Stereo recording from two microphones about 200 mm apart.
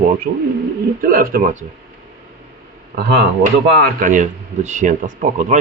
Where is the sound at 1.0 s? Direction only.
45° right (ahead or behind).